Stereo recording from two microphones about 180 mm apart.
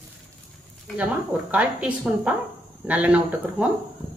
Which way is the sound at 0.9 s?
10° right (ahead or behind).